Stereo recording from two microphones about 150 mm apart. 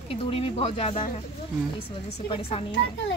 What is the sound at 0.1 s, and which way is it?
Speech, 40° left (ahead or behind).